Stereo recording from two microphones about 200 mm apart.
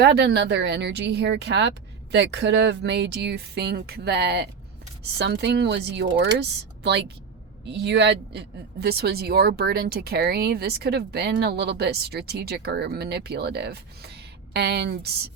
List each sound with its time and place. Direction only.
0.0 s speech: 55° right (ahead or behind)
7.7 s speech: 60° right (ahead or behind)